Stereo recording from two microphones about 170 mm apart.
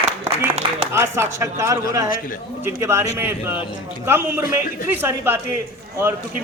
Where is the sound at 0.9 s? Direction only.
15° right (ahead or behind).